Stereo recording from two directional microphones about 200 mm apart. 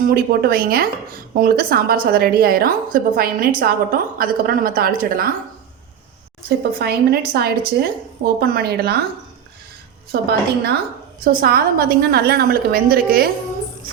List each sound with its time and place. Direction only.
0.1 s a woman's voice: 50° right (ahead or behind)
6.7 s a woman's voice: 50° right (ahead or behind)
10.1 s a woman's voice: 55° right (ahead or behind)